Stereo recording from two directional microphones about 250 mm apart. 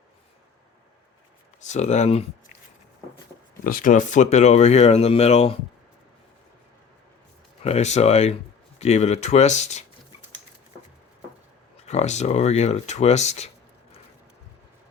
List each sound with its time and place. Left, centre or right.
1.6 s speech: left
3.6 s speech: left
7.6 s speech: left
11.9 s speech: left